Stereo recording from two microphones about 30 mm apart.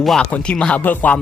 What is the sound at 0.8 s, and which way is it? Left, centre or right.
Music, left.